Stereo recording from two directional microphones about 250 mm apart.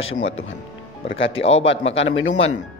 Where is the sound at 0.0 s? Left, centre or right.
Left.